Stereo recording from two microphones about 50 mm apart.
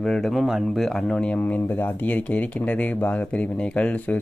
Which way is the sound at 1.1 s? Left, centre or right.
Left.